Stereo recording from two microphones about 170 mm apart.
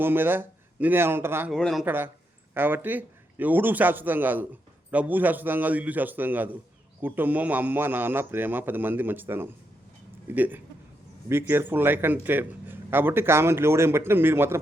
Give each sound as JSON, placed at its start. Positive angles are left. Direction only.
{"t": 0.0, "sound": "speech", "side_deg": -10}
{"t": 1.5, "sound": "speech", "side_deg": 0}
{"t": 2.6, "sound": "speech", "side_deg": -10}